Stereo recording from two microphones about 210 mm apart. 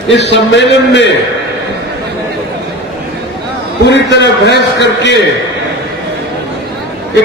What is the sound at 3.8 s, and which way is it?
A man's voice, 55° left (ahead or behind).